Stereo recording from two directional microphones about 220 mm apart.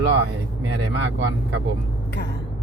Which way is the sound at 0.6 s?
50° right (ahead or behind).